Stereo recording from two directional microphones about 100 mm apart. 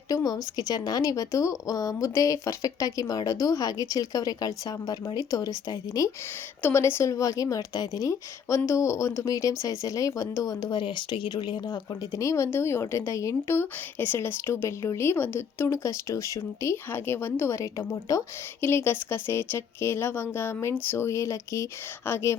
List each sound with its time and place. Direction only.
0.1 s speech: 40° left (ahead or behind)
6.6 s speech: 25° left (ahead or behind); by 11.6 s 50° left (ahead or behind)
11.7 s speech: 30° left (ahead or behind)